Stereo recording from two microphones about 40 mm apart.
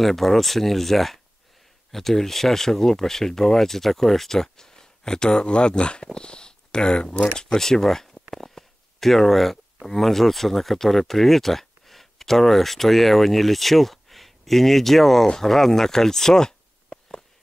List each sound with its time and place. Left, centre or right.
0.0 s speech: centre